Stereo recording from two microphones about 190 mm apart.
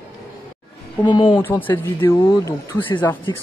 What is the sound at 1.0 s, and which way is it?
Speech, 25° left (ahead or behind).